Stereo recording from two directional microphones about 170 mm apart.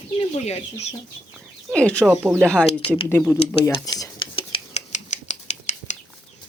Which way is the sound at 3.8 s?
25° left (ahead or behind).